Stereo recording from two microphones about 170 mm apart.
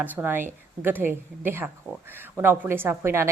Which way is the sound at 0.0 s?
10° right (ahead or behind).